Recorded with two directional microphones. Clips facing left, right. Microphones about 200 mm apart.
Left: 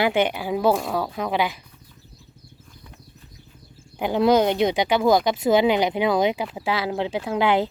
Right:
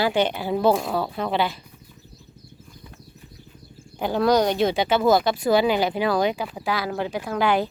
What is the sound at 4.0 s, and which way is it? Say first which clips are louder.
Speech: left 1 dB; 20° left (ahead or behind).